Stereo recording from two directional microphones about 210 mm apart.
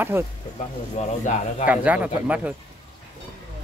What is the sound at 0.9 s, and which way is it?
Speech, 35° left (ahead or behind).